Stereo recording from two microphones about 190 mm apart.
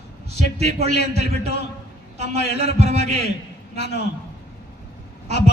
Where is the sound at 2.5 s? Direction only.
60° left (ahead or behind).